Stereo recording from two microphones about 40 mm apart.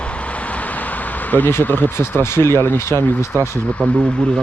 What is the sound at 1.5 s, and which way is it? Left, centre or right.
Speech, left.